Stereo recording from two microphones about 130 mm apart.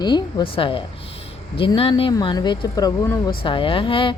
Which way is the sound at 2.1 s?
30° left (ahead or behind).